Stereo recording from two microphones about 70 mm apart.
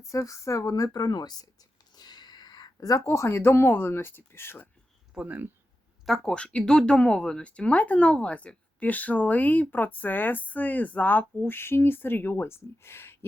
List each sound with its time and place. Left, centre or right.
0.1 s speech: left
2.0 s a sound: left
3.0 s speech: left
5.1 s speech: right
6.1 s speech: centre; by 13.1 s left